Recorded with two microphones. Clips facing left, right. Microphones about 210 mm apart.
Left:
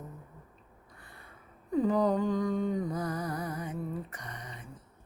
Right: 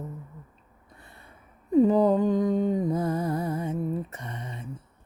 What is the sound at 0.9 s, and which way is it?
Snort, 25° right (ahead or behind).